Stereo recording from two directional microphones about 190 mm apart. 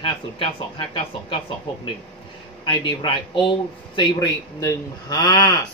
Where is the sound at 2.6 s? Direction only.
25° left (ahead or behind).